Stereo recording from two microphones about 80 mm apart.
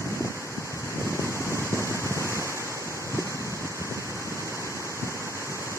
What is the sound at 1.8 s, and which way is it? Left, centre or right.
Wind noise, left.